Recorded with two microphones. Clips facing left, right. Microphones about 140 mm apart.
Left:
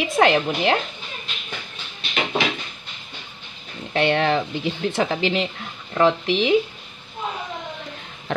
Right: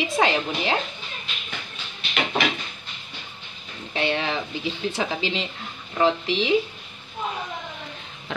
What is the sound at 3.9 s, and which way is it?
Speech, 55° left (ahead or behind).